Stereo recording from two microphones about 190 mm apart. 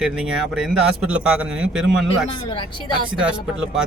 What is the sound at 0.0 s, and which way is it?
Speech, 5° right (ahead or behind).